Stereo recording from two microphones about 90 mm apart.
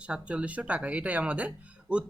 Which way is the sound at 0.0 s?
15° right (ahead or behind).